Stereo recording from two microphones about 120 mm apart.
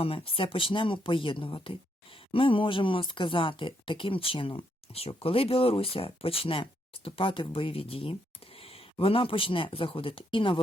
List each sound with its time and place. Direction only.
0.0 s speech: 50° left (ahead or behind)